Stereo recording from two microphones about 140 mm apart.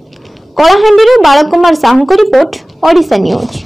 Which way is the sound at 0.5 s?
Centre (ahead or behind).